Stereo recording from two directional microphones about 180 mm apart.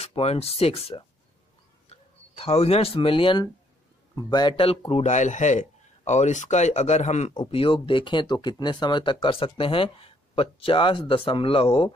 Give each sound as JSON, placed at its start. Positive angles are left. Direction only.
{"t": 0.0, "sound": "a man's voice", "side_deg": 35}